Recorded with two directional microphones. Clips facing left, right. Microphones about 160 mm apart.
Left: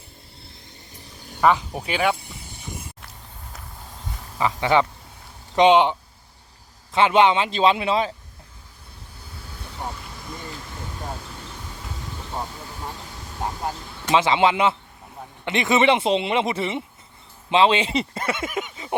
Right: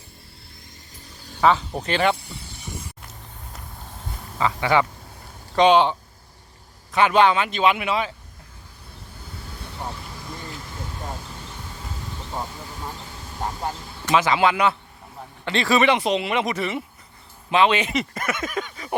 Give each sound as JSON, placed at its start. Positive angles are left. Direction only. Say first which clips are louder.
{"t": 1.4, "sound": "speech", "louder": "even", "side_deg": 10}
{"t": 4.4, "sound": "speech", "louder": "left 1 dB", "side_deg": 20}
{"t": 14.1, "sound": "speech", "louder": "left 1 dB", "side_deg": 25}